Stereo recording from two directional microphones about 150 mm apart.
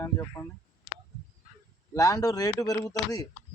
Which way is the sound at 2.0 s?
25° left (ahead or behind).